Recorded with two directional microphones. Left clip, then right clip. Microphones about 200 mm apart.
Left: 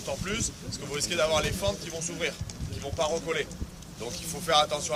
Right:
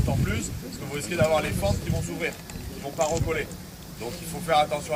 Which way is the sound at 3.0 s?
20° left (ahead or behind).